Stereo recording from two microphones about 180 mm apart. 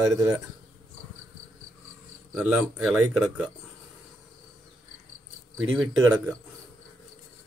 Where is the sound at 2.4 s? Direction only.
5° right (ahead or behind).